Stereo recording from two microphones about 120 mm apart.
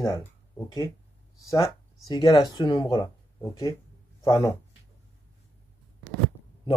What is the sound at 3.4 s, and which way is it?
Speech, 25° left (ahead or behind).